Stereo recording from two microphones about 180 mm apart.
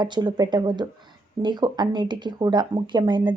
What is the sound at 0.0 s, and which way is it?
Speech, 25° right (ahead or behind).